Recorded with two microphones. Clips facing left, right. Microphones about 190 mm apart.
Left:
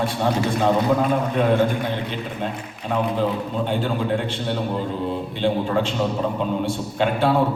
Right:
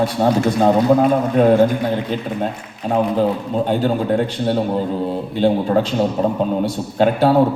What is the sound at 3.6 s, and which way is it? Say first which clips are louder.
A man's voice: right 6 dB; 40° right (ahead or behind).